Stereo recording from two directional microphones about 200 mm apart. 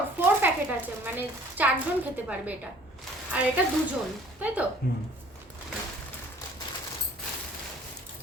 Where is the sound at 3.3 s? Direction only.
5° right (ahead or behind).